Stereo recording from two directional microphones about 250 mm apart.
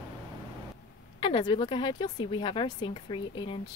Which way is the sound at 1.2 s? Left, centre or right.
Centre.